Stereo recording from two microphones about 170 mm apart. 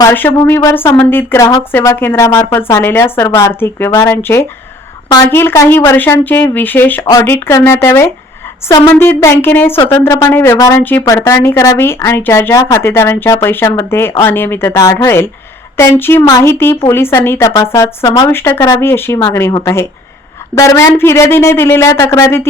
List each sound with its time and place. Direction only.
0.0 s speech: 10° left (ahead or behind)
7.0 s a woman's voice: 20° left (ahead or behind)
18.3 s speech: 15° left (ahead or behind)